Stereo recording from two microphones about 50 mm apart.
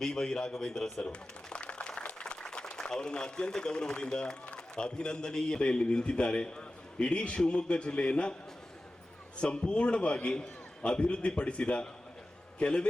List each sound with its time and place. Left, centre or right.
0.0 s a man's voice: centre
9.4 s a man's voice: left